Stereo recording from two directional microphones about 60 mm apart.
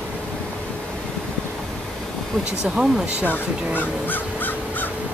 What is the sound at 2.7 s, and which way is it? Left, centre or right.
Speech, centre.